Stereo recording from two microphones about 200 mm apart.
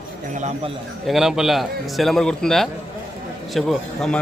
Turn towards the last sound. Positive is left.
turn(degrees=0)  # may be behind; listen again after turning